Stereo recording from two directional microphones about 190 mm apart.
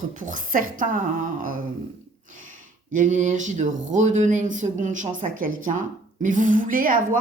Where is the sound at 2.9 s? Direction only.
40° right (ahead or behind).